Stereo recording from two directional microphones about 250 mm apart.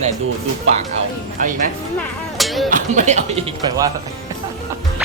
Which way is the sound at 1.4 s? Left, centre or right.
Right.